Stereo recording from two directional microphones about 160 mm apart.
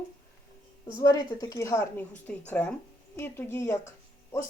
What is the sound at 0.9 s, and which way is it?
Speech, 25° left (ahead or behind).